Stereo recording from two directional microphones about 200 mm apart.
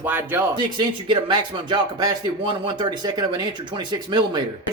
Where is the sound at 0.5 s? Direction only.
25° right (ahead or behind).